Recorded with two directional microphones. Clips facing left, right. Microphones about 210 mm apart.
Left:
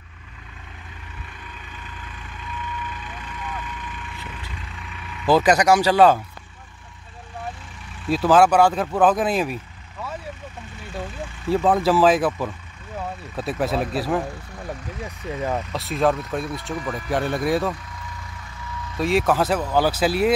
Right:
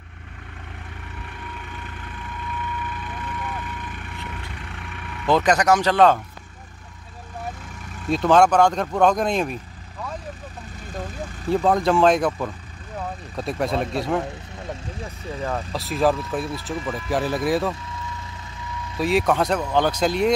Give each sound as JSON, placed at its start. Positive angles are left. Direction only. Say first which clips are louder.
{"t": 1.4, "sound": "vehicle", "louder": "right 4 dB", "side_deg": -60}
{"t": 5.2, "sound": "speech", "louder": "left 2 dB", "side_deg": 5}
{"t": 8.1, "sound": "speech", "louder": "even", "side_deg": 5}
{"t": 10.8, "sound": "speech", "louder": "even", "side_deg": -40}
{"t": 11.5, "sound": "speech", "louder": "even", "side_deg": 5}
{"t": 14.7, "sound": "speech", "louder": "left 1 dB", "side_deg": 15}
{"t": 15.7, "sound": "speech", "louder": "right 1 dB", "side_deg": 0}
{"t": 18.9, "sound": "speech", "louder": "even", "side_deg": 0}